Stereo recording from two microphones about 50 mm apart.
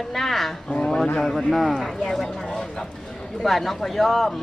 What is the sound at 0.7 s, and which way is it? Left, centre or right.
A woman's voice, centre.